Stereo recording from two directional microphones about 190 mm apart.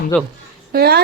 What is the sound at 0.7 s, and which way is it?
Speech, 55° right (ahead or behind).